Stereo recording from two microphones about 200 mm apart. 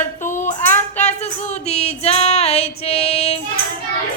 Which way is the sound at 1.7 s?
30° left (ahead or behind).